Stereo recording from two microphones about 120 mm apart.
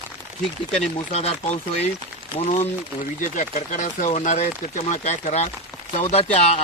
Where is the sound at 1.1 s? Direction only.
60° left (ahead or behind).